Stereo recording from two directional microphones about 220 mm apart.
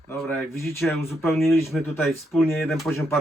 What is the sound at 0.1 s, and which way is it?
Speech, 5° left (ahead or behind).